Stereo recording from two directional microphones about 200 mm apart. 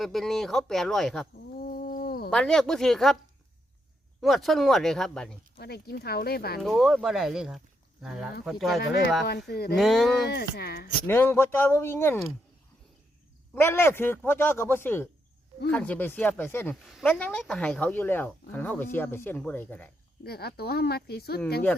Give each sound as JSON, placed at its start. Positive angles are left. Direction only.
{"t": 0.0, "sound": "speech", "side_deg": 0}
{"t": 1.5, "sound": "cat", "side_deg": 45}
{"t": 2.3, "sound": "speech", "side_deg": 5}
{"t": 4.2, "sound": "speech", "side_deg": 0}
{"t": 5.5, "sound": "speech", "side_deg": 50}
{"t": 6.6, "sound": "speech", "side_deg": 0}
{"t": 8.8, "sound": "speech", "side_deg": 55}
{"t": 9.7, "sound": "speech", "side_deg": 0}
{"t": 10.2, "sound": "speech", "side_deg": 50}
{"t": 11.0, "sound": "speech", "side_deg": 10}
{"t": 13.5, "sound": "speech", "side_deg": 10}
{"t": 20.2, "sound": "speech", "side_deg": 50}